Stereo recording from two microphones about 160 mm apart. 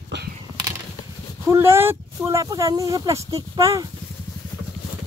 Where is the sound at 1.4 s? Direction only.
15° right (ahead or behind).